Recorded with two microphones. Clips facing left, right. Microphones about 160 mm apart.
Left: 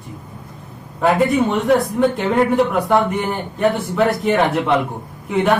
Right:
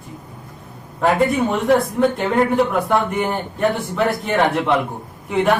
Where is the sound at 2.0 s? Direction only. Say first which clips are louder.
Left 1 dB; centre (ahead or behind).